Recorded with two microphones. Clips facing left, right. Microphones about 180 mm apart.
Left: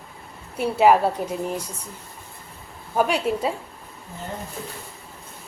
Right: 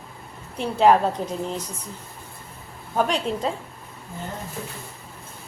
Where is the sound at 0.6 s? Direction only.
10° left (ahead or behind).